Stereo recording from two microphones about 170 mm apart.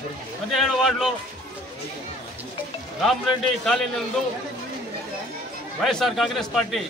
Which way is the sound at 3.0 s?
Centre (ahead or behind).